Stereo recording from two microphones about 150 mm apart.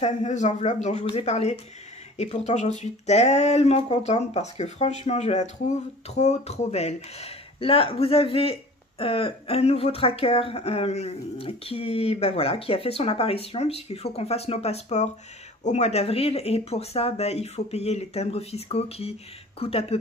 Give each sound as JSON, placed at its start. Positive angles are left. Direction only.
{"t": 0.0, "sound": "speech", "side_deg": 50}